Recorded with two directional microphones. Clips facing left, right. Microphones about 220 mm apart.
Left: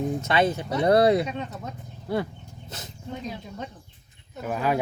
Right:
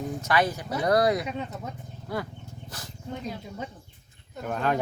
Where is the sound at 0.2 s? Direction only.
25° left (ahead or behind).